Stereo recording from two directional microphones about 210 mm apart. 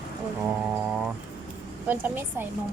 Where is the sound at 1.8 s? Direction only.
10° right (ahead or behind).